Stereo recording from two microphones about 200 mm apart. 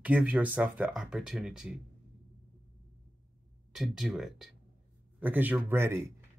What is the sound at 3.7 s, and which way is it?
Speech, centre (ahead or behind).